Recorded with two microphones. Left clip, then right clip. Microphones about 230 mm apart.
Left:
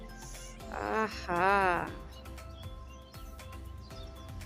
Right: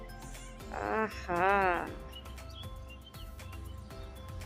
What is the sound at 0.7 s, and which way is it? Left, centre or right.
Music, centre.